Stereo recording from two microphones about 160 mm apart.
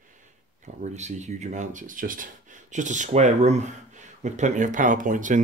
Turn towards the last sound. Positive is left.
turn(degrees=-55)  # may be behind; listen again after turning